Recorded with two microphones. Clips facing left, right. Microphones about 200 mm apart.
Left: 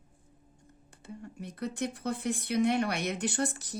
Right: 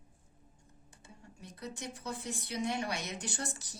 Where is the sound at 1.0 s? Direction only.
60° left (ahead or behind).